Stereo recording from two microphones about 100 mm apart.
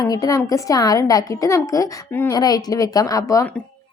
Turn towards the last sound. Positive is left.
turn(degrees=35)  # may be behind; listen again after turning